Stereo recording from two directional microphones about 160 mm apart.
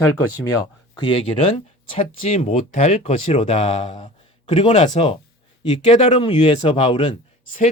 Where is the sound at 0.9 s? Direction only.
35° left (ahead or behind).